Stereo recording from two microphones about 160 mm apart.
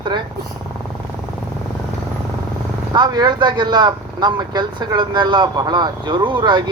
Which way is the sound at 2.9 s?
25° right (ahead or behind).